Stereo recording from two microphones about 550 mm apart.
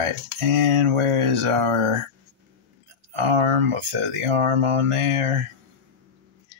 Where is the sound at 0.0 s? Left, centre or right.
Right.